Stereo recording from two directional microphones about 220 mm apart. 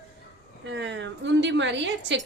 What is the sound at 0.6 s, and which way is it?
A woman's voice, 55° right (ahead or behind).